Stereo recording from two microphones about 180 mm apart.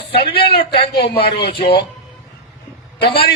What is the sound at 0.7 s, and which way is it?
Speech, 30° left (ahead or behind).